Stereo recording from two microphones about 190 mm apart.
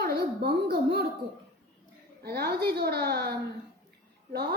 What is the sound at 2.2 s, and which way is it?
A woman's voice, 55° right (ahead or behind).